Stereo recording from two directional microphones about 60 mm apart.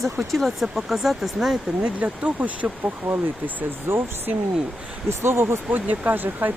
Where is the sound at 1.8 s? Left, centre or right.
Right.